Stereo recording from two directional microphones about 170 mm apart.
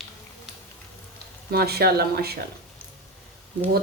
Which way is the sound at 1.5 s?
70° right (ahead or behind).